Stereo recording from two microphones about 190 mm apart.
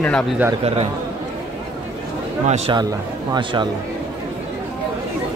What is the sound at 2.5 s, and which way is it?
Speech, 35° right (ahead or behind).